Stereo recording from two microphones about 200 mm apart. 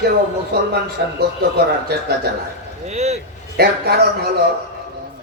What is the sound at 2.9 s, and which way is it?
Speech, 35° right (ahead or behind).